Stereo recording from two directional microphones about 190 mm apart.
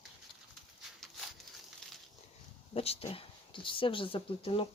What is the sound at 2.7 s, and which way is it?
Speech, 30° left (ahead or behind).